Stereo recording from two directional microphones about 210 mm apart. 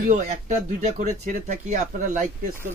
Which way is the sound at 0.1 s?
35° right (ahead or behind).